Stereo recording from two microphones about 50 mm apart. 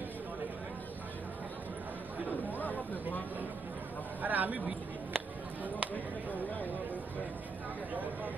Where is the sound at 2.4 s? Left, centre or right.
Left.